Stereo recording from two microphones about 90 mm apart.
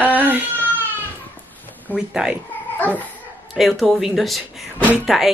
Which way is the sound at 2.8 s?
20° left (ahead or behind).